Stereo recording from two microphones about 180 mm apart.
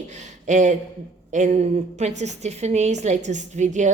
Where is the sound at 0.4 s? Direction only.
40° right (ahead or behind).